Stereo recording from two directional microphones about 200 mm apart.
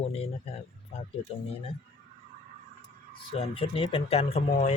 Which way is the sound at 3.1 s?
25° left (ahead or behind).